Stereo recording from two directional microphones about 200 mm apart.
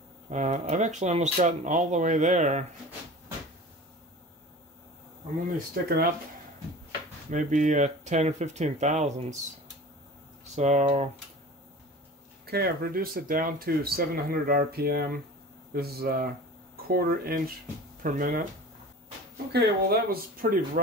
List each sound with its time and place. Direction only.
0.3 s speech: 35° right (ahead or behind)
7.2 s speech: 40° right (ahead or behind)
10.5 s speech: 35° right (ahead or behind)
12.4 s speech: 50° right (ahead or behind)
19.5 s speech: 50° right (ahead or behind)